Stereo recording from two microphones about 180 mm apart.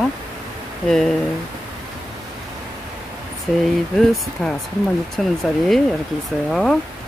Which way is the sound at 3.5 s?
5° left (ahead or behind).